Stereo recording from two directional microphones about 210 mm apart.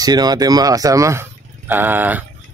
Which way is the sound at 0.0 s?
20° right (ahead or behind).